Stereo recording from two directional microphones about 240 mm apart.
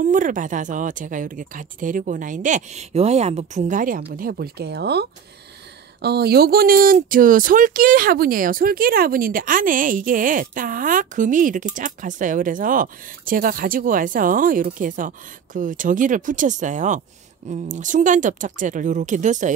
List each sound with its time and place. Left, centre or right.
0.0 s speech: right